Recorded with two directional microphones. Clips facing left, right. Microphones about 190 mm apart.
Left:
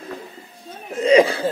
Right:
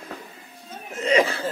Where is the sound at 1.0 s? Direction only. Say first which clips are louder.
Left 6 dB; 15° left (ahead or behind).